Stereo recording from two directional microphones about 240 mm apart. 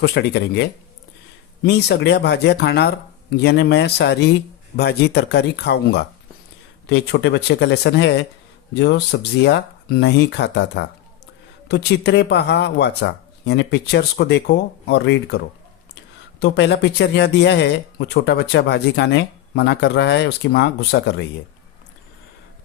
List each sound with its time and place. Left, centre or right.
0.0 s speech: left
16.4 s speech: left